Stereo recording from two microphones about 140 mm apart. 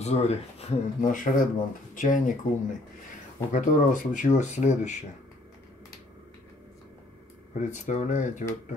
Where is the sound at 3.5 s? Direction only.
65° left (ahead or behind).